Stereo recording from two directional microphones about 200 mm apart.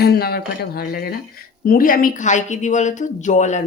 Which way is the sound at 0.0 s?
50° left (ahead or behind).